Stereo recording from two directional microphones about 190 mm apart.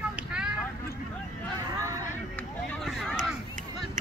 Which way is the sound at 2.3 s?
5° left (ahead or behind).